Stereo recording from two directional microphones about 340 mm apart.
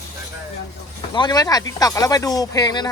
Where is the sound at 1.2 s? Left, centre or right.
Centre.